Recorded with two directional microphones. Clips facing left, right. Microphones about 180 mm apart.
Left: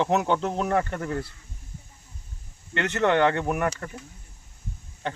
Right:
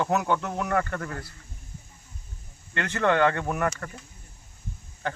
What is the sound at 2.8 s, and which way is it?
Speech, 20° left (ahead or behind).